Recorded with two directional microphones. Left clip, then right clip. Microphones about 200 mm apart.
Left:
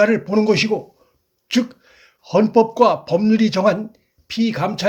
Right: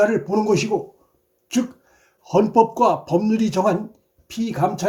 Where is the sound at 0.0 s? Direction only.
25° left (ahead or behind).